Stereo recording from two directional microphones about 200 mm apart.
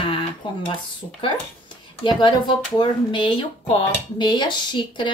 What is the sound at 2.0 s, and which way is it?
Speech, 25° left (ahead or behind).